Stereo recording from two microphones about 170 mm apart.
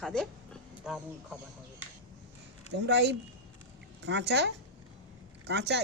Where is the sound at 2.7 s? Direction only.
85° right.